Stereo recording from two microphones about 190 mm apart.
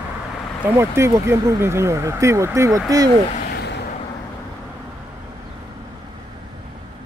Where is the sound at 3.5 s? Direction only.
60° left (ahead or behind).